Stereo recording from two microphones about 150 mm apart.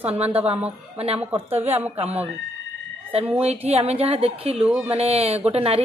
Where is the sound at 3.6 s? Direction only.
45° right (ahead or behind).